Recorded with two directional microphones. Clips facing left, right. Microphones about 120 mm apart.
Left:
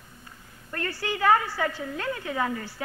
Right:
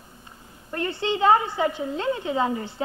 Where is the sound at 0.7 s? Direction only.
20° right (ahead or behind).